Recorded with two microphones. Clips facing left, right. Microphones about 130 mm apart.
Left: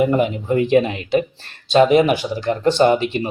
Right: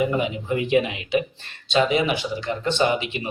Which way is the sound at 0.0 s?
50° left (ahead or behind).